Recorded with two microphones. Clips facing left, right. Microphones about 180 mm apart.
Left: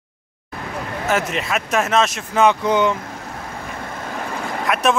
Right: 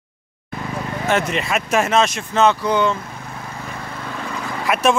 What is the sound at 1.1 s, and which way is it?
A man's voice, centre (ahead or behind).